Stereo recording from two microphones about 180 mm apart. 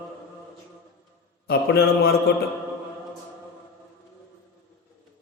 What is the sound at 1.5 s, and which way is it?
Speech, 60° left (ahead or behind).